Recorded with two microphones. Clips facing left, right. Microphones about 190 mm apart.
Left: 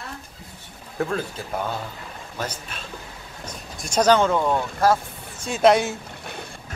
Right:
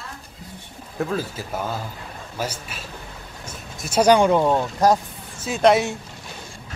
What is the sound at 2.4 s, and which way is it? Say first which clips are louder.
Speech: right 2 dB; 5° right (ahead or behind).